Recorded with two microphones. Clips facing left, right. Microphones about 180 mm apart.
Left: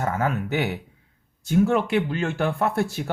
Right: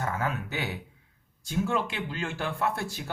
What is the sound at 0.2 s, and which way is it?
Speech, 60° left (ahead or behind).